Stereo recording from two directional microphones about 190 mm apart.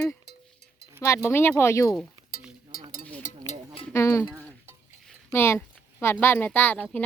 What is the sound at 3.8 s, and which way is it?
Speech, 15° left (ahead or behind).